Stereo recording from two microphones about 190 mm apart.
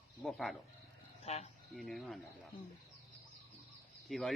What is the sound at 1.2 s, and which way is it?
Speech, 35° left (ahead or behind).